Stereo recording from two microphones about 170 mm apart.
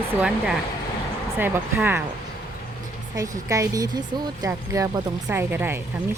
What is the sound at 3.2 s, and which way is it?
Speech, 20° right (ahead or behind).